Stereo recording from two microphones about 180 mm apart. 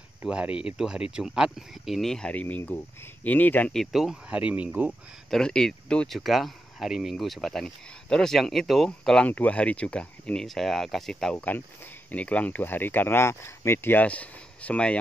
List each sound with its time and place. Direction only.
0.2 s speech: 5° right (ahead or behind)